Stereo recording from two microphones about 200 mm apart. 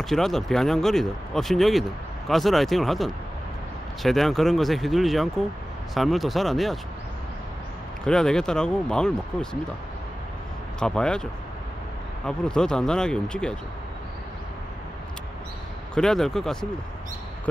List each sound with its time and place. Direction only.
0.0 s speech: centre (ahead or behind)
8.0 s speech: 5° left (ahead or behind)
10.8 s speech: 5° left (ahead or behind)
12.3 s speech: 5° left (ahead or behind)
15.9 s speech: 5° left (ahead or behind)